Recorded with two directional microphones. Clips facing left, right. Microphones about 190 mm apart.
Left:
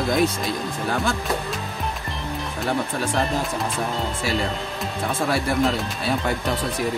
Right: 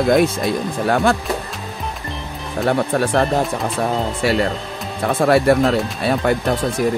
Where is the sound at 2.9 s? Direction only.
55° right (ahead or behind).